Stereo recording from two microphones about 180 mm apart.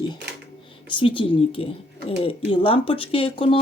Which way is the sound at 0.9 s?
30° left (ahead or behind).